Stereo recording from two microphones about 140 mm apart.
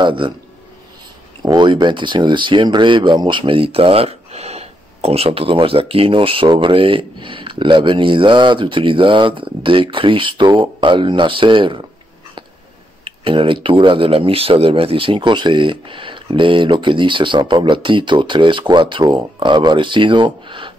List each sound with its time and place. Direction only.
0.0 s speech: 35° right (ahead or behind)
1.4 s speech: 30° right (ahead or behind)
13.0 s speech: 40° right (ahead or behind)